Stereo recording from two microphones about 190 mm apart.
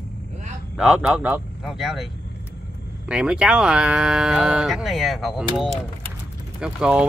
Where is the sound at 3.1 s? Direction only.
5° right (ahead or behind).